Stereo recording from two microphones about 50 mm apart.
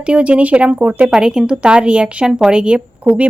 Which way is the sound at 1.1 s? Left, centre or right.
Centre.